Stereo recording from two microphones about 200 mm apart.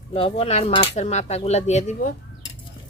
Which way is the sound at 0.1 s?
30° left (ahead or behind).